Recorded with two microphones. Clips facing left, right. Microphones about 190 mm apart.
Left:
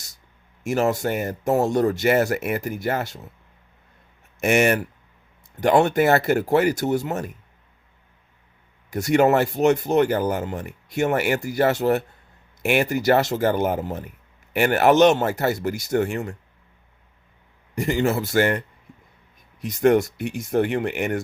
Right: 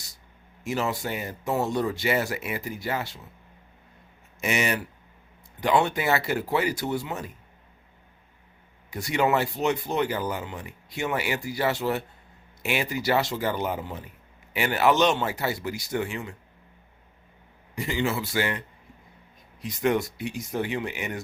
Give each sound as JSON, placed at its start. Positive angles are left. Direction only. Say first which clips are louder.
{"t": 0.6, "sound": "speech", "louder": "left 7 dB", "side_deg": 45}
{"t": 4.4, "sound": "speech", "louder": "left 8 dB", "side_deg": 50}
{"t": 8.9, "sound": "speech", "louder": "left 7 dB", "side_deg": 45}
{"t": 17.7, "sound": "speech", "louder": "left 6 dB", "side_deg": 45}
{"t": 19.6, "sound": "speech", "louder": "left 7 dB", "side_deg": 45}